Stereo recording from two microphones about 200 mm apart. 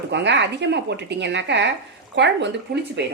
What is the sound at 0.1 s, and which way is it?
Speech, 60° right (ahead or behind).